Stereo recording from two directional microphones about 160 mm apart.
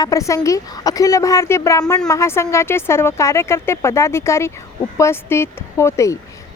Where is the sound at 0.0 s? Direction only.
20° left (ahead or behind).